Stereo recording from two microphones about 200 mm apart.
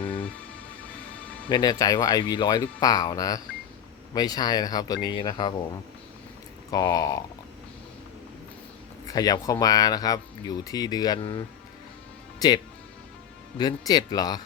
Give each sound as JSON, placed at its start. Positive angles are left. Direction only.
{"t": 1.5, "sound": "speech", "side_deg": 20}
{"t": 6.7, "sound": "speech", "side_deg": 15}
{"t": 9.0, "sound": "speech", "side_deg": 20}
{"t": 13.6, "sound": "speech", "side_deg": 20}